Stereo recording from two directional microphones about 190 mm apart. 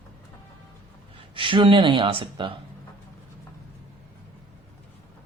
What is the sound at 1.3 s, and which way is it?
Speech, 25° right (ahead or behind).